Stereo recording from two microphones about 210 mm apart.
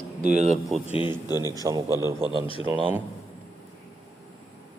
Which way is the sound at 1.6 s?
20° right (ahead or behind).